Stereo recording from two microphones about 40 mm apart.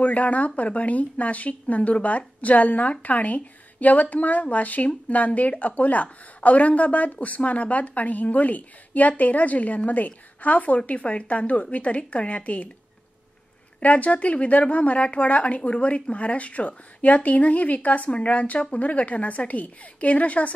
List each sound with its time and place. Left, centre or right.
0.0 s a woman's voice: left
13.7 s a woman's voice: left